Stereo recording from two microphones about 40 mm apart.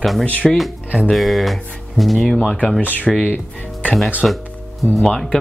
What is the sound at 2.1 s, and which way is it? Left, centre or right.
Speech, centre.